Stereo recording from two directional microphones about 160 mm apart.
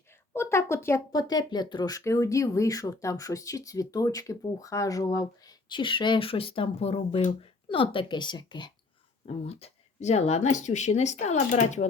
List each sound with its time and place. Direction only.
0.1 s speech: 15° left (ahead or behind)
9.2 s speech: 40° left (ahead or behind)